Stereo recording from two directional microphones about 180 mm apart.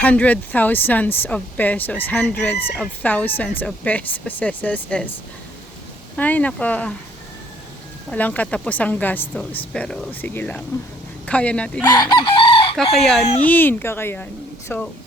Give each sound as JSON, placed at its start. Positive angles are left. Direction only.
{"t": 0.0, "sound": "speech", "side_deg": 10}
{"t": 6.1, "sound": "speech", "side_deg": 10}
{"t": 8.1, "sound": "speech", "side_deg": 10}
{"t": 11.9, "sound": "chicken", "side_deg": 25}
{"t": 12.7, "sound": "chicken", "side_deg": 0}
{"t": 13.4, "sound": "speech", "side_deg": 10}